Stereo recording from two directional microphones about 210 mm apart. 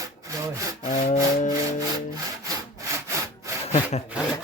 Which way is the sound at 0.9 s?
35° left (ahead or behind).